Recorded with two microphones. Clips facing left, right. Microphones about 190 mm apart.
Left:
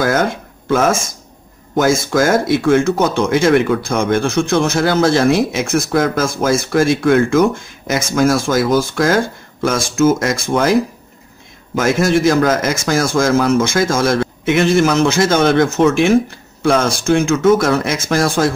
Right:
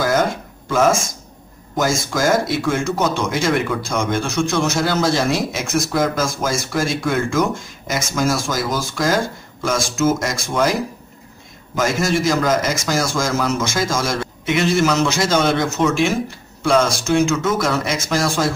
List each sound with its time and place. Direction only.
1.8 s speech: 55° left (ahead or behind)
11.7 s speech: 55° left (ahead or behind)